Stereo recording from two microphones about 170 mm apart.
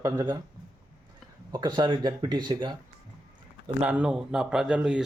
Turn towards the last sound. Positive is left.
turn(degrees=-5)  # may be behind; listen again after turning